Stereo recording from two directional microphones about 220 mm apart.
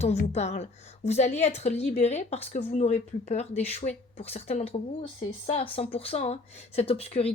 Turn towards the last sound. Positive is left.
turn(degrees=25)  # may be behind; listen again after turning